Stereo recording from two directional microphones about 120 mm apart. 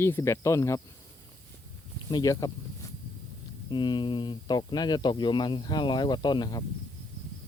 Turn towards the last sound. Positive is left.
turn(degrees=35)  # may be behind; listen again after turning